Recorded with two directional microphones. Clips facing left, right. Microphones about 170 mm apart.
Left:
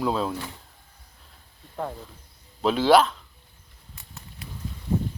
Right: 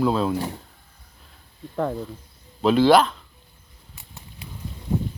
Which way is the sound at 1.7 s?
60° right (ahead or behind).